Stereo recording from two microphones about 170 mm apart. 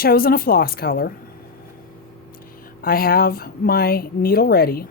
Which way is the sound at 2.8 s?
60° left (ahead or behind).